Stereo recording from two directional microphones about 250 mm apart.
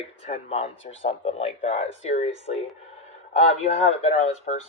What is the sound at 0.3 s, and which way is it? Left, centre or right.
Speech, left.